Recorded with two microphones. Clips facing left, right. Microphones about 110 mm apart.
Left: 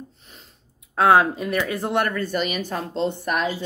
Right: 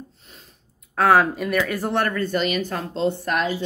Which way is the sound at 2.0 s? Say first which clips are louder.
Right 2 dB; 5° left (ahead or behind).